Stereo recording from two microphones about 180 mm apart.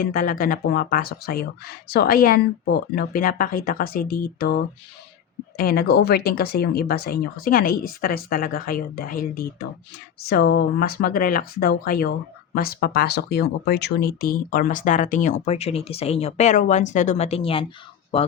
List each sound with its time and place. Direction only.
0.0 s speech: 50° left (ahead or behind); by 17.7 s 30° left (ahead or behind)